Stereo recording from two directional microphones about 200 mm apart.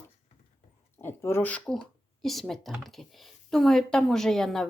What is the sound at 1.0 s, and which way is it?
A woman's voice, 10° left (ahead or behind).